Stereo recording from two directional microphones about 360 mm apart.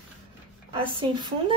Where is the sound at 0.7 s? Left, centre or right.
Centre.